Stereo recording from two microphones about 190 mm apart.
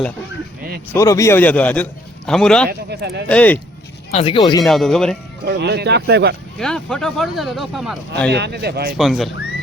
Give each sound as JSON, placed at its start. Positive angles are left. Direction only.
{"t": 0.9, "sound": "a man's voice", "side_deg": 15}
{"t": 2.6, "sound": "speech", "side_deg": -55}
{"t": 3.2, "sound": "a man's voice", "side_deg": 5}
{"t": 4.1, "sound": "speech", "side_deg": 30}
{"t": 4.6, "sound": "speech", "side_deg": 0}
{"t": 5.5, "sound": "speech", "side_deg": -60}
{"t": 6.6, "sound": "speech", "side_deg": 5}
{"t": 8.3, "sound": "speech", "side_deg": -60}
{"t": 9.0, "sound": "speech", "side_deg": 0}